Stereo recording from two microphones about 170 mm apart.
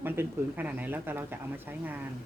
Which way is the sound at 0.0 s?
10° right (ahead or behind).